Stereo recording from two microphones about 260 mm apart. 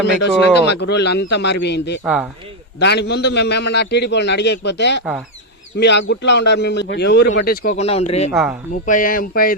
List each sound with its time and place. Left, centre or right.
0.2 s a man's voice: left
2.0 s speech: centre
2.8 s a man's voice: left
8.3 s speech: centre
8.7 s a man's voice: left